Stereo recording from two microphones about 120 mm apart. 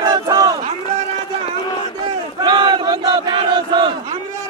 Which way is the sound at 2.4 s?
40° right (ahead or behind).